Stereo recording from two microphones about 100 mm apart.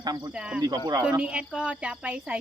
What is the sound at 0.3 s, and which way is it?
Cricket, 10° right (ahead or behind).